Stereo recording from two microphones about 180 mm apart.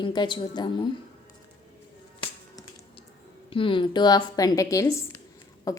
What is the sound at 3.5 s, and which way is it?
A woman's voice, 30° left (ahead or behind).